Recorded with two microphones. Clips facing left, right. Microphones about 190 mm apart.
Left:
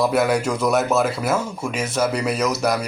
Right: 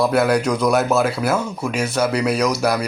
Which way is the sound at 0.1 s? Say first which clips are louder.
Right 2 dB; centre (ahead or behind).